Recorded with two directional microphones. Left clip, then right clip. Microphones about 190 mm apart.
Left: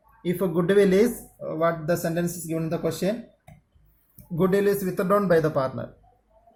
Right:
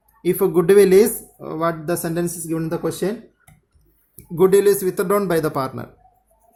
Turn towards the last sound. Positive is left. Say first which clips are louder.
# right 1 dB
turn(degrees=-50)  # may be behind; listen again after turning